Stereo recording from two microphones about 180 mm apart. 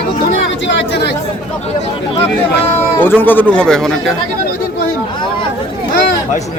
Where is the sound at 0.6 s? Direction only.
70° left (ahead or behind).